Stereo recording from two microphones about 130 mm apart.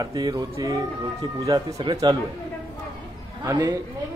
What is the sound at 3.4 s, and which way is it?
Speech, 25° right (ahead or behind).